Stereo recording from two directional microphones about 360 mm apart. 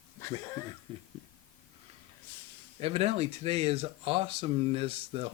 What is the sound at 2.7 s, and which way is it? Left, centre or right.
Speech, centre.